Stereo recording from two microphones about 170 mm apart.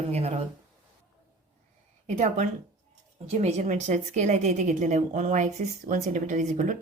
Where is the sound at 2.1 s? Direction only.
40° right (ahead or behind).